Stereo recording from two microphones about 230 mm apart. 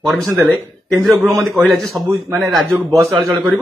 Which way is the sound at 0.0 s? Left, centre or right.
Centre.